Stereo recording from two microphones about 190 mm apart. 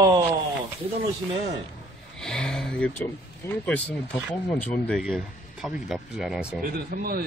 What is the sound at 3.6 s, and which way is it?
Speech, 5° left (ahead or behind).